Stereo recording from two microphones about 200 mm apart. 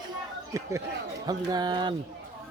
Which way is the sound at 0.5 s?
15° right (ahead or behind).